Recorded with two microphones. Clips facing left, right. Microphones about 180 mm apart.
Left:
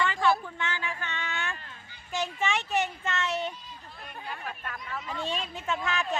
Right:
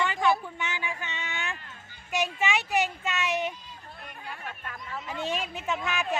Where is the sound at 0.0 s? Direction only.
15° right (ahead or behind).